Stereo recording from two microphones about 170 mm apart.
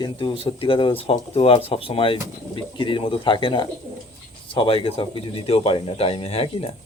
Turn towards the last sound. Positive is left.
turn(degrees=35)  # may be behind; listen again after turning